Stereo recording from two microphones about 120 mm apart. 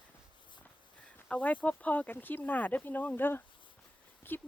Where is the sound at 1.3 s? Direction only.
10° left (ahead or behind).